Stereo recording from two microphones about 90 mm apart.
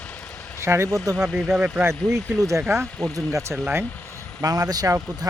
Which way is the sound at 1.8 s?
30° right (ahead or behind).